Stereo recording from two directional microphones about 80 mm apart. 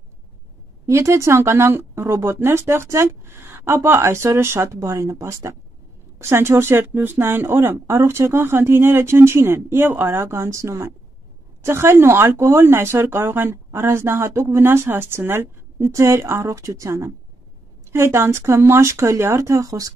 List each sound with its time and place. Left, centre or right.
0.8 s speech: right